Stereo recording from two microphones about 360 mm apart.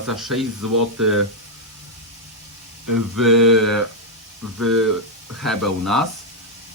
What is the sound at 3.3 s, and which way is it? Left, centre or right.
Speech, right.